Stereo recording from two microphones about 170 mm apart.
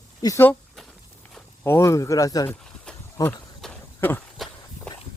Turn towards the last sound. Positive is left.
turn(degrees=10)  # may be behind; listen again after turning